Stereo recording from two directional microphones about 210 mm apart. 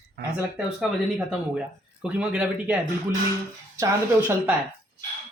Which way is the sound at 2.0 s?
5° right (ahead or behind).